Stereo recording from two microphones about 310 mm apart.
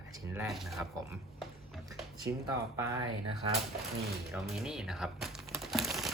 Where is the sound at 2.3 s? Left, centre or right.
Centre.